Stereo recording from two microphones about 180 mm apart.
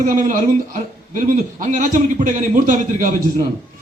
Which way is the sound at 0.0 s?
45° right (ahead or behind).